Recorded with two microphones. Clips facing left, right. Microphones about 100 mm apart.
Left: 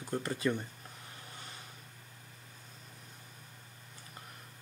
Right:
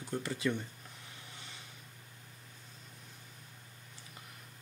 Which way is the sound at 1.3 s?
45° left (ahead or behind).